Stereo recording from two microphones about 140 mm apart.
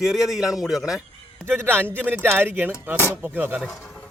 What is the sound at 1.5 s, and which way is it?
Speech, 15° right (ahead or behind).